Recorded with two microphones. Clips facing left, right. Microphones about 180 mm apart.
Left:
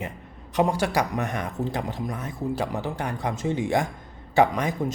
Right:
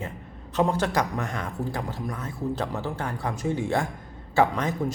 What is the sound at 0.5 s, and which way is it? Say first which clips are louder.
A man's voice: left 1 dB; 15° left (ahead or behind).